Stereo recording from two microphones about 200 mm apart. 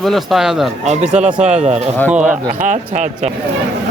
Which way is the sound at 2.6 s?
40° right (ahead or behind).